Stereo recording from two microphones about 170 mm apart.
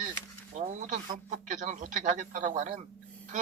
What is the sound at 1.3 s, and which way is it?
A man's voice, 50° right (ahead or behind).